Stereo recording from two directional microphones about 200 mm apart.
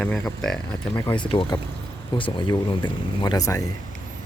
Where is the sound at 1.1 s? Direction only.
25° left (ahead or behind).